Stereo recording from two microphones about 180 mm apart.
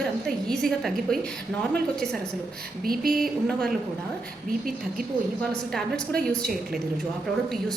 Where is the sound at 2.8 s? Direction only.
55° right (ahead or behind).